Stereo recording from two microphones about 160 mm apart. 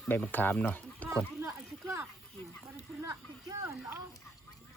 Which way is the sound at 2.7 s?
20° right (ahead or behind).